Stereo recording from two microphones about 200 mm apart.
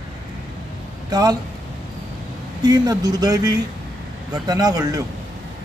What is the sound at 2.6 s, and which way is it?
Speech, 20° right (ahead or behind).